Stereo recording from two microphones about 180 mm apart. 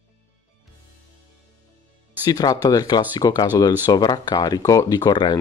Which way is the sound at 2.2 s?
20° left (ahead or behind).